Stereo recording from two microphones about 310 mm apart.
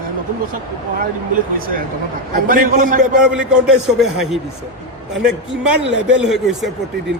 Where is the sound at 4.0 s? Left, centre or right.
Centre.